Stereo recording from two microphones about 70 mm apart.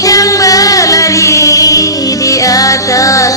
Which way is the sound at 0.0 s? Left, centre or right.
Left.